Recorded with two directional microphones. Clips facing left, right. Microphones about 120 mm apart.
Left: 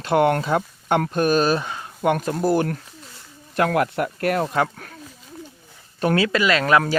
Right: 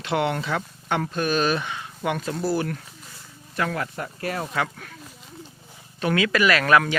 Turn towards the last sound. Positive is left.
turn(degrees=25)  # may be behind; listen again after turning